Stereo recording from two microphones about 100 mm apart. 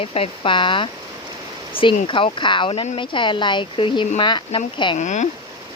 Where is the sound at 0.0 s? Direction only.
70° left (ahead or behind); by 4.9 s 55° left (ahead or behind).